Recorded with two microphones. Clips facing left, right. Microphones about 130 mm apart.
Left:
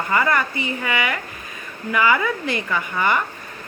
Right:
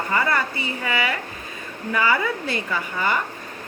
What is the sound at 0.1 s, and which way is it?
Speech, 35° right (ahead or behind).